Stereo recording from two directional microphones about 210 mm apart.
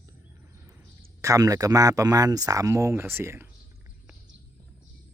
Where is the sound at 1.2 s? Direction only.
15° right (ahead or behind).